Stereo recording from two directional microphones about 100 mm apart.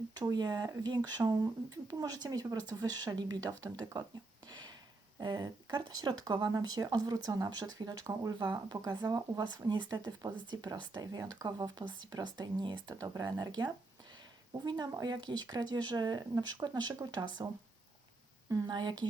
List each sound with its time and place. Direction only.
0.1 s speech: 40° right (ahead or behind)
5.2 s speech: 45° right (ahead or behind)
18.7 s speech: 50° right (ahead or behind)